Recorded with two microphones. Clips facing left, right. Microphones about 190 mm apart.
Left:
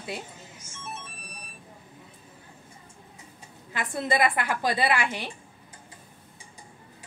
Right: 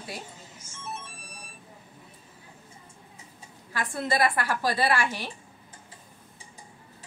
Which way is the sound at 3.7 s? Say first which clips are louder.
Left 1 dB; 20° left (ahead or behind).